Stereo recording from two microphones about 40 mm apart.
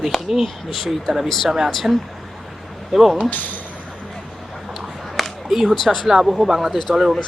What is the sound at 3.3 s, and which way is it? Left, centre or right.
Speech, left.